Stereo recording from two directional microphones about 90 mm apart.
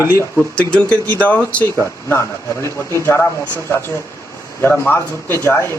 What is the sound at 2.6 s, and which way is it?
Speech, 30° left (ahead or behind).